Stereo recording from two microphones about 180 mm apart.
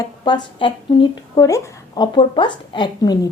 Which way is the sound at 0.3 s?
25° left (ahead or behind).